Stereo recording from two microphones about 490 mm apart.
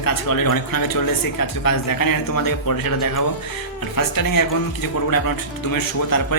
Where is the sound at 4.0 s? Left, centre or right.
Left.